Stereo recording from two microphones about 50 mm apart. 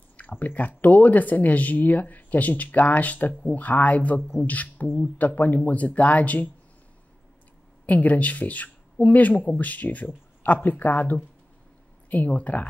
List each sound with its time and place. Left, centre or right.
0.2 s a sound: left
0.5 s speech: left
7.8 s speech: left